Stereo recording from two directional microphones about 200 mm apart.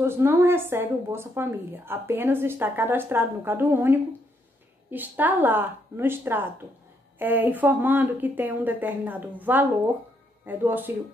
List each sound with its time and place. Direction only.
0.0 s a woman's voice: 10° right (ahead or behind)